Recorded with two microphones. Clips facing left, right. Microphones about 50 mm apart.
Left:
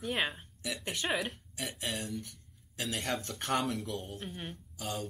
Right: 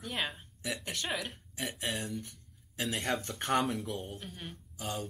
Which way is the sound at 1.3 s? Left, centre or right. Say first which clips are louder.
Right 2 dB; centre.